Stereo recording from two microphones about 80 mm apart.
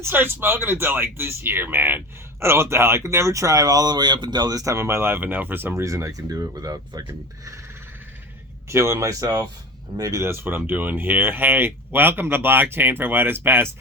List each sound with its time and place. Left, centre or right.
0.0 s speech: right
5.7 s speech: right
8.7 s speech: right